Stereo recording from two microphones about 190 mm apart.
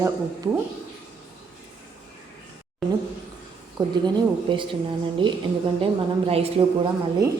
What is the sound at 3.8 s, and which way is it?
Speech, 20° right (ahead or behind).